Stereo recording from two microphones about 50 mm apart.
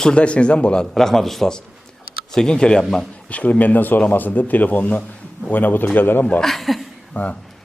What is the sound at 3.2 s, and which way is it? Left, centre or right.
Speech, left.